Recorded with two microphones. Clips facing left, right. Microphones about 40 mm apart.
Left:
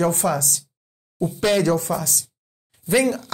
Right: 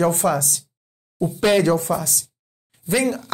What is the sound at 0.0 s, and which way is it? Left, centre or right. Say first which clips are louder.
Speech: right 2 dB; right.